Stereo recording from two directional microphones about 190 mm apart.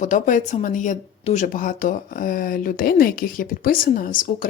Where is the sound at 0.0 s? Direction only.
40° left (ahead or behind).